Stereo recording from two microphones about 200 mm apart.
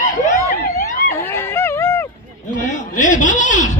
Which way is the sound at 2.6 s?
40° left (ahead or behind).